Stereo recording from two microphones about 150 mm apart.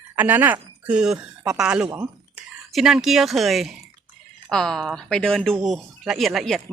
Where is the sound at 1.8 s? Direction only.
20° right (ahead or behind).